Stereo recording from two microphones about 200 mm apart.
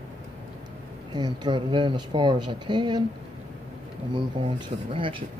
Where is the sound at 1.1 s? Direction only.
20° right (ahead or behind).